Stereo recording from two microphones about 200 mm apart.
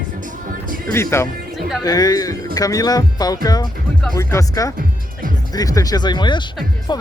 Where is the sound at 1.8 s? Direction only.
20° left (ahead or behind).